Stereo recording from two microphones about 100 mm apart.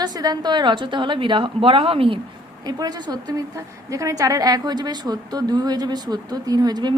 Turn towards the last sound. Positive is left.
turn(degrees=-45)  # may be behind; listen again after turning